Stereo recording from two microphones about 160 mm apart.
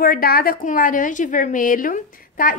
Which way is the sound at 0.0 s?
65° left (ahead or behind).